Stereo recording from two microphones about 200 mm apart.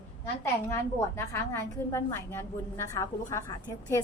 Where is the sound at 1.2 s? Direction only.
15° left (ahead or behind).